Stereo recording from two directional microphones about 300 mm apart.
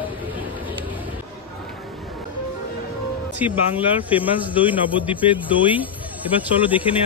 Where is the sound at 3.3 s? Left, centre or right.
Centre.